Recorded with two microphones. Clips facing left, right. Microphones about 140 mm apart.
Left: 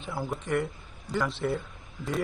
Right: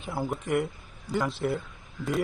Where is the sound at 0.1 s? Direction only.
25° right (ahead or behind).